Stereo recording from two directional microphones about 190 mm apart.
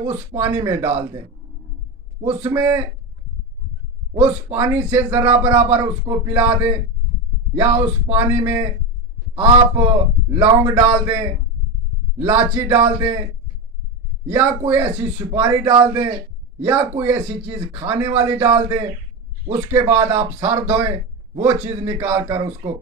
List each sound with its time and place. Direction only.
0.0 s a man's voice: 15° right (ahead or behind)
2.2 s a man's voice: 15° right (ahead or behind)
4.1 s a man's voice: 10° right (ahead or behind)
9.3 s a man's voice: 30° right (ahead or behind)
9.8 s a man's voice: 15° right (ahead or behind)
12.2 s a man's voice: 10° right (ahead or behind)
14.3 s a man's voice: 15° right (ahead or behind)